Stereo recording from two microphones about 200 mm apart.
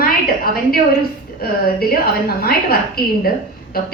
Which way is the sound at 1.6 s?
50° left (ahead or behind).